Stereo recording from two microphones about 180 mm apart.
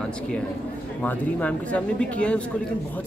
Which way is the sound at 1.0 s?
10° left (ahead or behind).